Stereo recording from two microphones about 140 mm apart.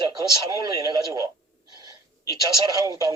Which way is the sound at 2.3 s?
30° right (ahead or behind).